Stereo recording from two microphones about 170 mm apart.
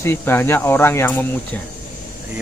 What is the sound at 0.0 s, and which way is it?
Speech, 15° left (ahead or behind).